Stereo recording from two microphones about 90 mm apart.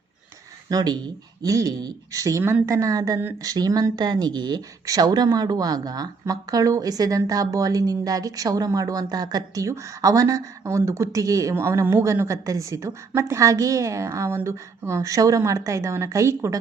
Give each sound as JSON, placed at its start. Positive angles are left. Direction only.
{"t": 0.7, "sound": "speech", "side_deg": -50}